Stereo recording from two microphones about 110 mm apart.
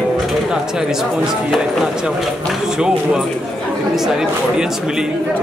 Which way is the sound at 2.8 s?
5° right (ahead or behind).